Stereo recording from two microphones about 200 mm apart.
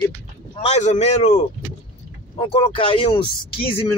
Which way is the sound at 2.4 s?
30° left (ahead or behind).